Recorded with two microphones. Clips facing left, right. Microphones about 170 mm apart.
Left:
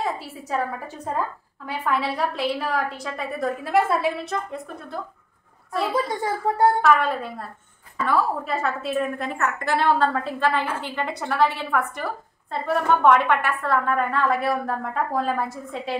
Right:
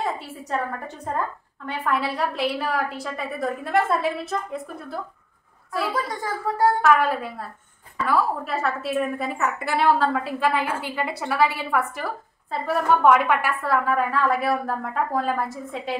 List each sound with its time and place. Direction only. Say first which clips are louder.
0.5 s a woman's voice: left 1 dB; 5° left (ahead or behind)
6.5 s a woman's voice: left 3 dB; 20° left (ahead or behind)
6.8 s a woman's voice: even; 5° right (ahead or behind)